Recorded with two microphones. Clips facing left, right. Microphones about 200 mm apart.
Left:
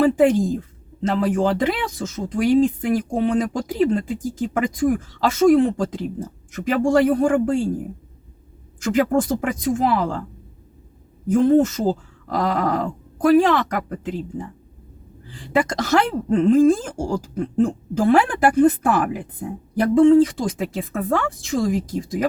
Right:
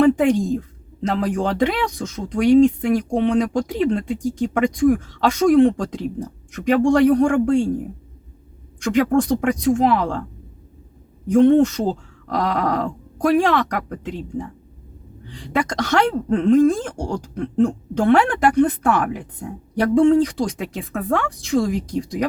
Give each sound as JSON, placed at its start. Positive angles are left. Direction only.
{"t": 0.0, "sound": "a woman's voice", "side_deg": 0}
{"t": 8.8, "sound": "speech", "side_deg": 5}
{"t": 11.3, "sound": "speech", "side_deg": 0}
{"t": 15.3, "sound": "speech", "side_deg": 0}